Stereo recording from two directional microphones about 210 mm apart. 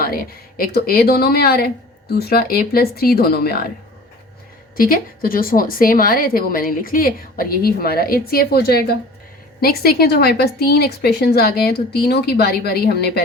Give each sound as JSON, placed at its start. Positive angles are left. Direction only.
{"t": 0.0, "sound": "a woman's voice", "side_deg": 45}
{"t": 4.8, "sound": "a woman's voice", "side_deg": 40}